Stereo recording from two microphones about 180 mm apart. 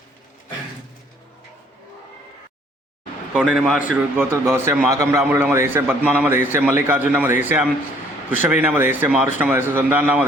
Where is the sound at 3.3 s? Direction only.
5° right (ahead or behind).